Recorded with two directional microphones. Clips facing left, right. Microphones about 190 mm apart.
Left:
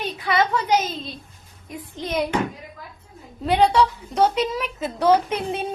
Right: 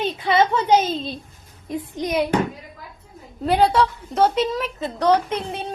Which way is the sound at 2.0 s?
10° right (ahead or behind).